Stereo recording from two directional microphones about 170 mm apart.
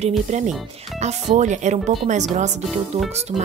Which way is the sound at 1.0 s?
45° right (ahead or behind).